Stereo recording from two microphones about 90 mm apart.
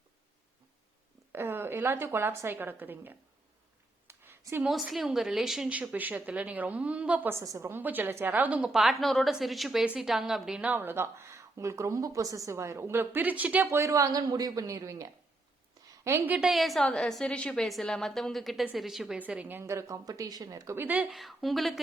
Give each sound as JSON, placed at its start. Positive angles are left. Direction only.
{"t": 1.3, "sound": "a woman's voice", "side_deg": -25}
{"t": 4.0, "sound": "a sound", "side_deg": -25}
{"t": 4.6, "sound": "a woman's voice", "side_deg": 0}
{"t": 5.9, "sound": "a woman's voice", "side_deg": -20}
{"t": 7.3, "sound": "speech", "side_deg": -35}
{"t": 7.7, "sound": "a woman's voice", "side_deg": -20}
{"t": 10.6, "sound": "a woman's voice", "side_deg": -20}
{"t": 16.3, "sound": "a woman's voice", "side_deg": -5}
{"t": 19.1, "sound": "a woman's voice", "side_deg": -15}
{"t": 19.6, "sound": "speech", "side_deg": -35}
{"t": 20.7, "sound": "a woman's voice", "side_deg": -15}
{"t": 21.1, "sound": "a woman's voice", "side_deg": 0}